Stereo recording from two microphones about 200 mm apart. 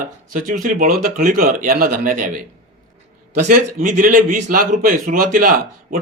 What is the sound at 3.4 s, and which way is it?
Speech, 40° right (ahead or behind).